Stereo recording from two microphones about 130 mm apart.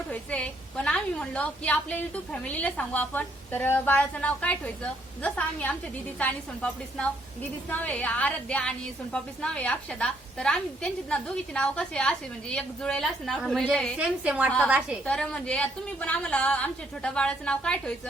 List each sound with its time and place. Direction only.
0.1 s a woman's voice: 10° left (ahead or behind); by 14.9 s 5° right (ahead or behind)
15.0 s a woman's voice: 5° left (ahead or behind)